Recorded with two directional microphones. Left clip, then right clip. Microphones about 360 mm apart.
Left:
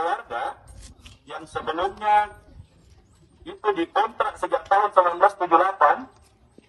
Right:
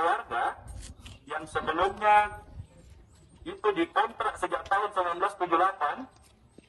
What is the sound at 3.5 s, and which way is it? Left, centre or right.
A man's voice, centre.